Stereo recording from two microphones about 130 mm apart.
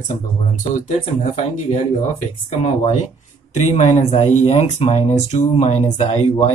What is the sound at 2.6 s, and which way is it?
Speech, 60° left (ahead or behind).